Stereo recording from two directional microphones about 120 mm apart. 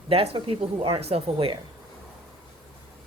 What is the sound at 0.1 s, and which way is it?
Speech, 50° right (ahead or behind).